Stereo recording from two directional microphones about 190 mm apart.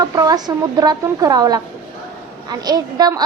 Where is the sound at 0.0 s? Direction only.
20° right (ahead or behind).